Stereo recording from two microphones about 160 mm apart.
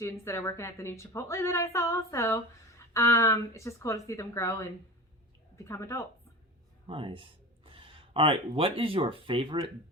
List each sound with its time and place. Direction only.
0.0 s a woman's voice: 15° left (ahead or behind)
5.6 s a woman's voice: 20° left (ahead or behind)
6.8 s speech: 35° right (ahead or behind)